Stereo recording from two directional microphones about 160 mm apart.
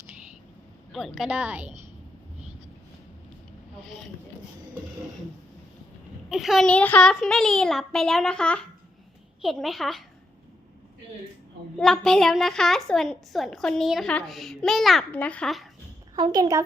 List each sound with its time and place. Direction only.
0.9 s a woman's voice: centre (ahead or behind)
6.2 s a child's voice: centre (ahead or behind)
11.8 s a child's voice: 5° left (ahead or behind)
16.1 s speech: 25° right (ahead or behind)